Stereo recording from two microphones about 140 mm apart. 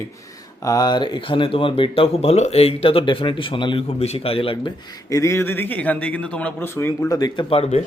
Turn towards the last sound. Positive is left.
turn(degrees=45)  # may be behind; listen again after turning